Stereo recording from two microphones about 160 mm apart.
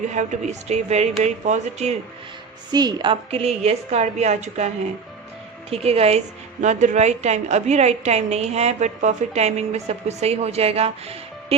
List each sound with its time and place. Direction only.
0.1 s a woman's voice: 45° right (ahead or behind)
2.7 s a woman's voice: 30° right (ahead or behind); by 4.7 s 45° right (ahead or behind)
5.7 s a woman's voice: 40° right (ahead or behind)